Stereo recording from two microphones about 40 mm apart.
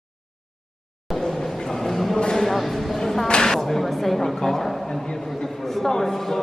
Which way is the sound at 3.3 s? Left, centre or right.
Left.